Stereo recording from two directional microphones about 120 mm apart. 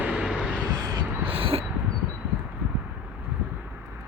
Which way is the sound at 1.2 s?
50° right (ahead or behind).